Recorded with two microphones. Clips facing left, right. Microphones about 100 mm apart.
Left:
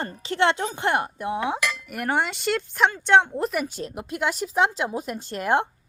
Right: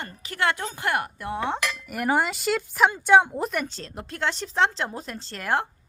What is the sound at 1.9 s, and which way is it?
A woman's voice, centre (ahead or behind).